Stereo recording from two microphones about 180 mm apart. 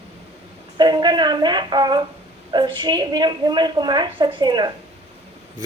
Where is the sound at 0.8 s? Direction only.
25° right (ahead or behind).